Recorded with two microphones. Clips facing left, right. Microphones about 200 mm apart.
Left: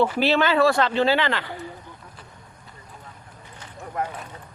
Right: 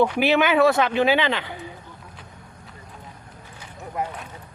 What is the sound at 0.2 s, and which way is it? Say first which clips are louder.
A man's voice: right 1 dB; 15° right (ahead or behind).